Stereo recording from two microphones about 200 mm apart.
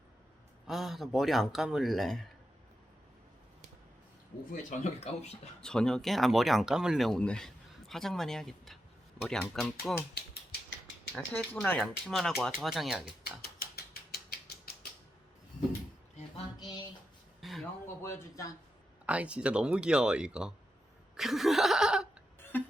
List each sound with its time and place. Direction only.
0.7 s speech: centre (ahead or behind)
4.5 s speech: 35° left (ahead or behind)
5.5 s speech: 5° left (ahead or behind)
11.1 s speech: 10° left (ahead or behind)
14.1 s a sound: 50° left (ahead or behind)
16.6 s a sound: 20° left (ahead or behind)
17.4 s a sound: centre (ahead or behind)
17.8 s speech: 15° left (ahead or behind)
19.0 s speech: 5° right (ahead or behind)
22.5 s music: 10° left (ahead or behind)